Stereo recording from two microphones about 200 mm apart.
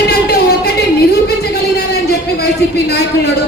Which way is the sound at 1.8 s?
55° left (ahead or behind).